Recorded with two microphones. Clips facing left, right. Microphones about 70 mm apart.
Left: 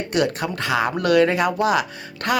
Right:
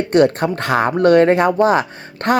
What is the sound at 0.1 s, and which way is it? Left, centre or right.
Speech, right.